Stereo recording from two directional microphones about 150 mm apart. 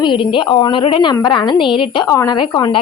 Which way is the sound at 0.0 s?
35° left (ahead or behind).